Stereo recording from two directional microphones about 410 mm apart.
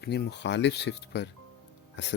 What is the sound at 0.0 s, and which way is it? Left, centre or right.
Speech, left.